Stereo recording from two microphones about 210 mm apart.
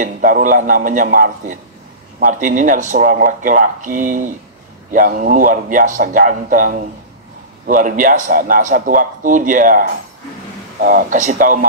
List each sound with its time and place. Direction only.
0.0 s a man's voice: 40° right (ahead or behind)